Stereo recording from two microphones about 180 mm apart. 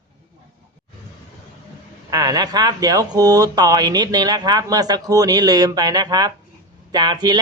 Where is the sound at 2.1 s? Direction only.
20° right (ahead or behind).